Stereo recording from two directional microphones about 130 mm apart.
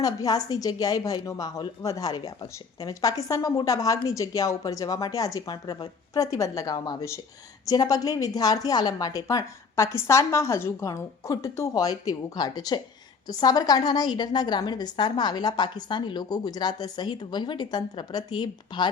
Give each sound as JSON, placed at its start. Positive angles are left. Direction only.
{"t": 0.0, "sound": "a woman's voice", "side_deg": 30}